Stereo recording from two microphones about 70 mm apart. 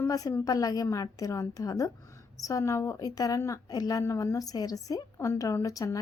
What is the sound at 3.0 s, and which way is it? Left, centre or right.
A woman's voice, left.